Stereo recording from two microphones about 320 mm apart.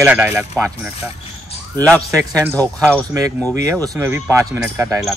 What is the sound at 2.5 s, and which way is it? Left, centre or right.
Speech, centre.